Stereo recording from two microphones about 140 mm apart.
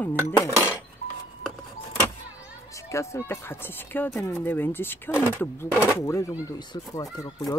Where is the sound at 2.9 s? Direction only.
20° left (ahead or behind).